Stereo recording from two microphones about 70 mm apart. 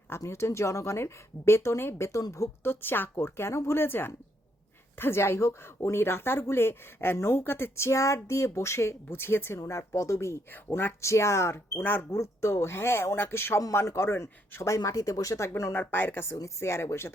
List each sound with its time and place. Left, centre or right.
0.2 s a woman's voice: left
2.6 s speech: left
9.6 s a woman's voice: left
10.7 s speech: left
11.0 s speech: left
12.2 s speech: left
14.8 s speech: left
15.4 s speech: left
15.8 s speech: left